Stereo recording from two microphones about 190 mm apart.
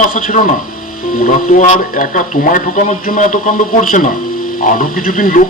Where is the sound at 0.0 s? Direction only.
45° left (ahead or behind).